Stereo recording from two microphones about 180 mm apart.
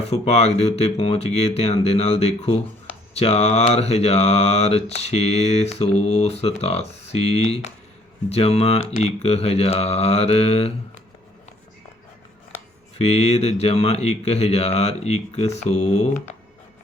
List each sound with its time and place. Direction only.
0.0 s mantra: 35° left (ahead or behind)
13.0 s mantra: 35° left (ahead or behind)